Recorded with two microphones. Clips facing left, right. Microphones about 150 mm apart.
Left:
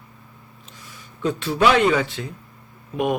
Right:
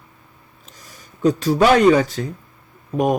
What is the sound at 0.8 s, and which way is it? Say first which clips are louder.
Speech: right 6 dB; 40° right (ahead or behind).